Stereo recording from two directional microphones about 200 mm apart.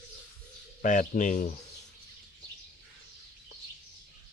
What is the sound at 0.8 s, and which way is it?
Speech, 40° left (ahead or behind).